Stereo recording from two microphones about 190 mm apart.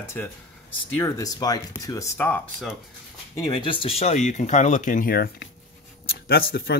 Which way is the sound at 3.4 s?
25° left (ahead or behind).